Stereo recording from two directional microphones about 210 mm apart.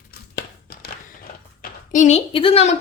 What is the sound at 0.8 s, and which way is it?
A woman's voice, 45° left (ahead or behind).